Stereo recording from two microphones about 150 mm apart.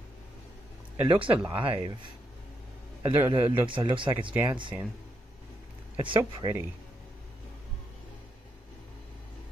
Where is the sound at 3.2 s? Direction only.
15° right (ahead or behind).